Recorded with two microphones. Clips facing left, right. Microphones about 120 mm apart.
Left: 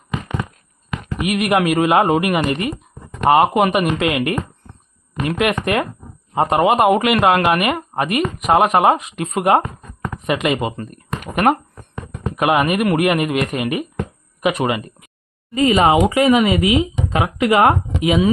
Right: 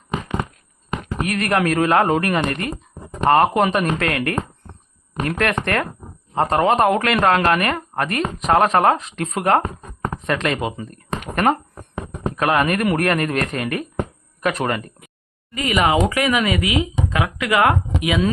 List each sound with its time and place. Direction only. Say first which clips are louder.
0.9 s a sound: left 1 dB; 35° right (ahead or behind)
1.3 s speech: left 3 dB; 15° left (ahead or behind)
5.2 s speech: left 2 dB; 10° left (ahead or behind)
9.6 s a sound: right 2 dB; 30° right (ahead or behind)
10.2 s speech: left 3 dB; 15° left (ahead or behind)
10.6 s speech: left 2 dB; centre (ahead or behind)
15.5 s speech: left 5 dB; 30° left (ahead or behind)